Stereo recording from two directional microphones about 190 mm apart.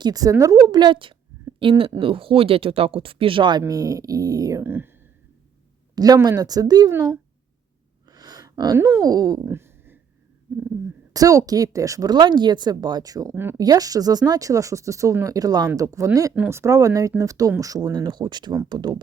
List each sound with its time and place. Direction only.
0.0 s a woman's voice: 20° right (ahead or behind)
5.9 s a woman's voice: 20° right (ahead or behind)
8.1 s a sound: 20° right (ahead or behind)
8.9 s hoot: 20° right (ahead or behind)
11.1 s a woman's voice: 20° right (ahead or behind)